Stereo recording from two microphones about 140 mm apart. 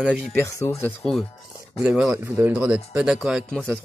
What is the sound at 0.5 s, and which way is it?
Speech, 20° left (ahead or behind).